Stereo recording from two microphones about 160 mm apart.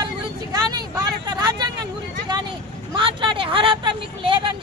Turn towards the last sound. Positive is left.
turn(degrees=-30)  # may be behind; listen again after turning